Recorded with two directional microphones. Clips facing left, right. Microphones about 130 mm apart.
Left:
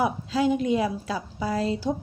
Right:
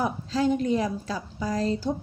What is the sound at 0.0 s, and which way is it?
Speech, 10° left (ahead or behind).